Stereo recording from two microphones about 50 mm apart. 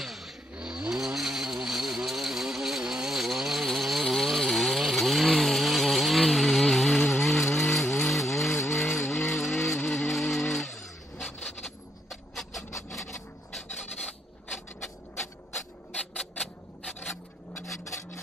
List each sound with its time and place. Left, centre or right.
0.0 s vehicle: centre
0.6 s vehicle: centre
2.0 s a sound: centre
2.8 s chainsaw: centre
8.6 s vehicle: centre
16.2 s a sound: centre
17.8 s filing: left